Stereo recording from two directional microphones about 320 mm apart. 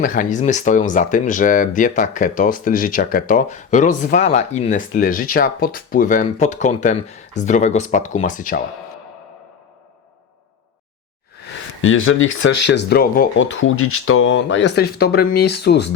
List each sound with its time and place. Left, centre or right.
0.0 s speech: left
11.8 s speech: left